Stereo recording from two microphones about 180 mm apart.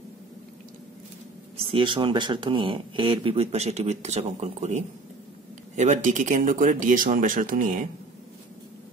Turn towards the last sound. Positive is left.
turn(degrees=-50)  # may be behind; listen again after turning